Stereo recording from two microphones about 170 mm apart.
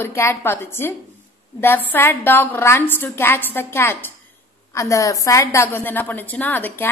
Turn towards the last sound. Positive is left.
turn(degrees=10)  # may be behind; listen again after turning